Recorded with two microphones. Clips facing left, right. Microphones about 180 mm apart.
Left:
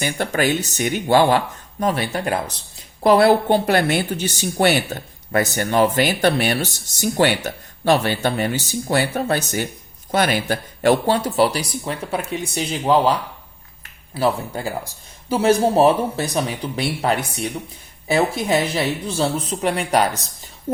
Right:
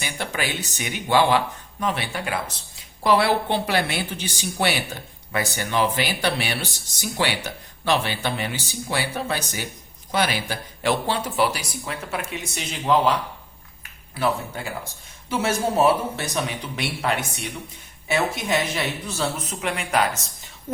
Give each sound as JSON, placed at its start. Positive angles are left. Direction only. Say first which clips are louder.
{"t": 0.0, "sound": "speech", "louder": "left 8 dB", "side_deg": 50}